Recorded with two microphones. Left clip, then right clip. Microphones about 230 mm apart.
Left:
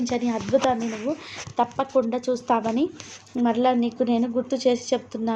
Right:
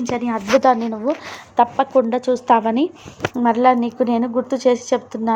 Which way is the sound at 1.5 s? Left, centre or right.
Right.